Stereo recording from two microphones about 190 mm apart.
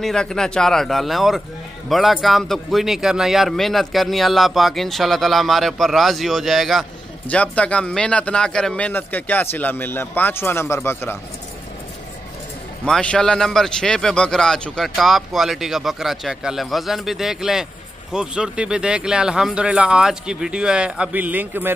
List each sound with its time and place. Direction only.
0.0 s a man's voice: 5° left (ahead or behind)
12.8 s a man's voice: 5° left (ahead or behind)